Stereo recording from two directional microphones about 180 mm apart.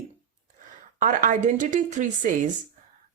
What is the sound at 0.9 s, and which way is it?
A woman's voice, 45° right (ahead or behind).